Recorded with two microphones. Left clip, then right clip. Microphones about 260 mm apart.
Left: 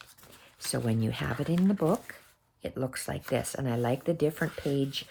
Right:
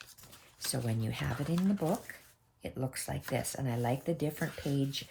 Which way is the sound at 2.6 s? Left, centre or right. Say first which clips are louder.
Left 5 dB; left.